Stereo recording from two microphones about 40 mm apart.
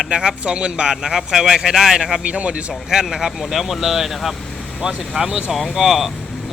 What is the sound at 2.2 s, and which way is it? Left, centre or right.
Speech, right.